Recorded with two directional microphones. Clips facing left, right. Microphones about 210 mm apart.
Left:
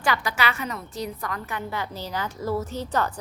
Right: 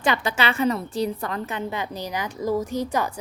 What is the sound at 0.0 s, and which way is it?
A woman's voice, 25° right (ahead or behind).